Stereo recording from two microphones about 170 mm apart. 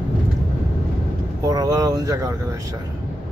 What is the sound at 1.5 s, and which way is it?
Speech, 20° right (ahead or behind).